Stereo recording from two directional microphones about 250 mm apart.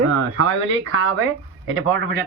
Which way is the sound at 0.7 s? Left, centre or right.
Right.